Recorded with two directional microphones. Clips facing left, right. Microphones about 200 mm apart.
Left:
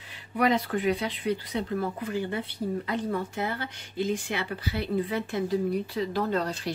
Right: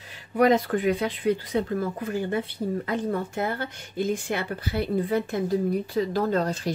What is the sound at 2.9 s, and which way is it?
Speech, 50° right (ahead or behind).